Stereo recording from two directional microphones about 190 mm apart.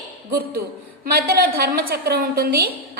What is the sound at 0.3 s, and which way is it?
A woman's voice, 50° right (ahead or behind).